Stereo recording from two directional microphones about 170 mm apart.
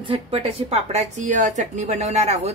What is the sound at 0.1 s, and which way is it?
Speech, 35° right (ahead or behind).